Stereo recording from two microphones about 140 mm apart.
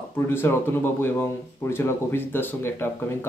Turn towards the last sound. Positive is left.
turn(degrees=15)  # may be behind; listen again after turning